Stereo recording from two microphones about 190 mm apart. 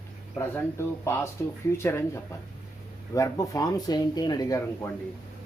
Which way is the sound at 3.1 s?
15° left (ahead or behind).